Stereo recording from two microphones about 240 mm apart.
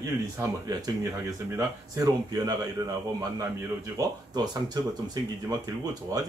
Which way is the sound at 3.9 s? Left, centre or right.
Centre.